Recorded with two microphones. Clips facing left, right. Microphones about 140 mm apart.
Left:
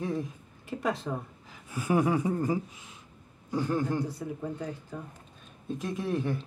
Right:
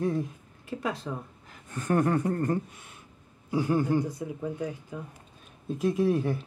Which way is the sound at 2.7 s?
60° right (ahead or behind).